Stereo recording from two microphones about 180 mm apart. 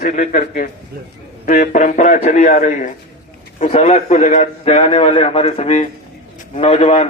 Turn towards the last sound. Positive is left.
turn(degrees=35)  # may be behind; listen again after turning